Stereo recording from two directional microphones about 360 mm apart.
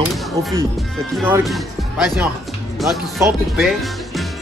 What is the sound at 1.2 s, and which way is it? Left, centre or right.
Speech, centre.